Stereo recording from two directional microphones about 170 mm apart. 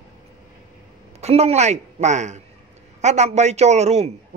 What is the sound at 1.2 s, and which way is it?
A man's voice, 40° right (ahead or behind).